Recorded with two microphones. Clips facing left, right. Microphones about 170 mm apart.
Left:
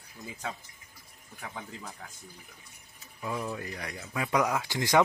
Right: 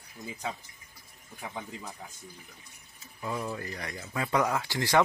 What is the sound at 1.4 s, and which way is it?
Speech, 10° right (ahead or behind).